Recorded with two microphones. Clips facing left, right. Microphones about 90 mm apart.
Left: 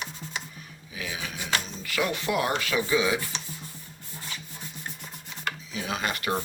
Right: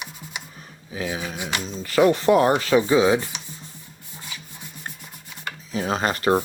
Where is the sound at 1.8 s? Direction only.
35° right (ahead or behind).